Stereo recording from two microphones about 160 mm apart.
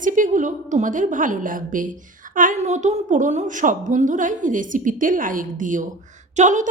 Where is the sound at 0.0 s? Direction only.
55° right (ahead or behind).